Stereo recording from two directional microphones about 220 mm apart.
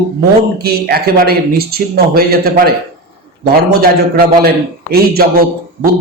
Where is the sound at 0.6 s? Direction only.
45° right (ahead or behind).